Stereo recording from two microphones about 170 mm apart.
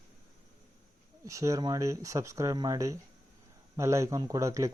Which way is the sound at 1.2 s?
20° right (ahead or behind).